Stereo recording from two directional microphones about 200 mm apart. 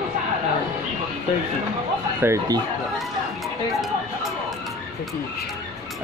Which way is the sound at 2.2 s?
15° right (ahead or behind).